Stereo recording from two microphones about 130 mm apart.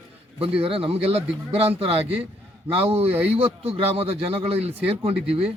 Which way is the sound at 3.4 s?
50° right (ahead or behind).